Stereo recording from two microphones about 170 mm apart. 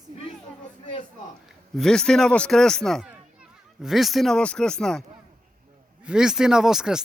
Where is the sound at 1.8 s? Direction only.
5° left (ahead or behind).